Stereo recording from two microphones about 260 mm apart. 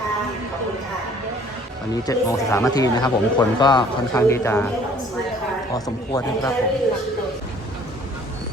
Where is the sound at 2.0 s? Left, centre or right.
Centre.